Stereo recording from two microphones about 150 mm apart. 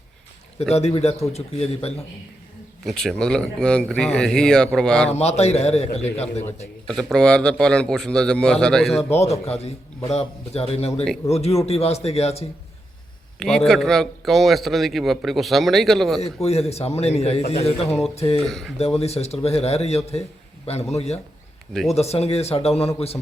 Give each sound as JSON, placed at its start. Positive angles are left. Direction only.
{"t": 0.7, "sound": "a man's voice", "side_deg": 45}
{"t": 2.8, "sound": "a man's voice", "side_deg": 5}
{"t": 5.1, "sound": "a man's voice", "side_deg": 45}
{"t": 6.8, "sound": "a man's voice", "side_deg": 5}
{"t": 9.1, "sound": "a man's voice", "side_deg": 45}
{"t": 13.7, "sound": "a man's voice", "side_deg": 0}
{"t": 16.2, "sound": "a man's voice", "side_deg": 45}
{"t": 18.4, "sound": "a man's voice", "side_deg": 0}
{"t": 18.9, "sound": "a man's voice", "side_deg": 45}
{"t": 21.7, "sound": "a man's voice", "side_deg": 5}
{"t": 21.9, "sound": "a man's voice", "side_deg": 45}